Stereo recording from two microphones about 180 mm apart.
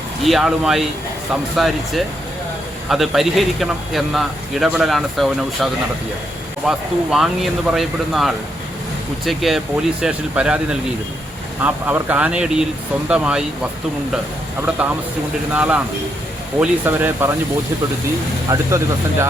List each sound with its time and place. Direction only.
0.2 s speech: centre (ahead or behind)
6.7 s speech: centre (ahead or behind)
14.8 s speech: 5° right (ahead or behind)
18.4 s speech: 20° right (ahead or behind)